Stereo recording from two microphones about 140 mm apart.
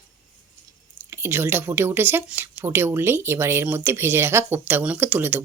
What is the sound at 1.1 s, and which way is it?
Speech, 15° right (ahead or behind).